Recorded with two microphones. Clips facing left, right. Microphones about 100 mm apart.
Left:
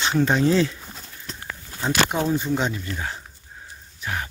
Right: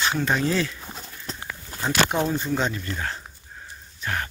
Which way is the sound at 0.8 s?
20° right (ahead or behind).